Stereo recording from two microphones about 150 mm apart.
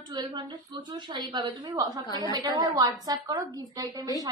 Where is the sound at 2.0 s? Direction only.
30° left (ahead or behind).